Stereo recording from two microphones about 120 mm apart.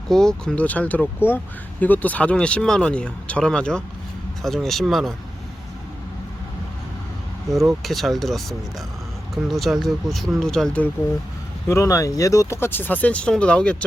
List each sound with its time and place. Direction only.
0.1 s speech: 5° left (ahead or behind)
7.7 s speech: centre (ahead or behind)
11.7 s speech: 25° left (ahead or behind); by 13.8 s 10° left (ahead or behind)